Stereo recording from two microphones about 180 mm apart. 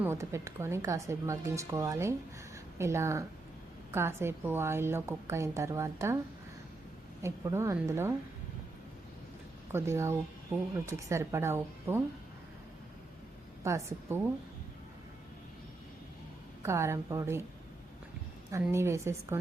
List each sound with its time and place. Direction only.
0.0 s a woman's voice: 15° right (ahead or behind)
7.2 s a woman's voice: 15° right (ahead or behind)
9.7 s a woman's voice: 15° right (ahead or behind)
13.7 s a woman's voice: 15° right (ahead or behind)
16.6 s a woman's voice: 15° right (ahead or behind)
18.7 s a woman's voice: 15° right (ahead or behind)